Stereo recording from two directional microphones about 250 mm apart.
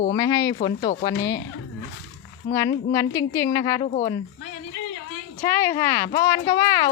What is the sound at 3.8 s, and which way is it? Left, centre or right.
Speech, left.